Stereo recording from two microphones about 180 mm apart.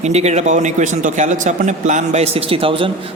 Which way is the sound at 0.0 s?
40° right (ahead or behind).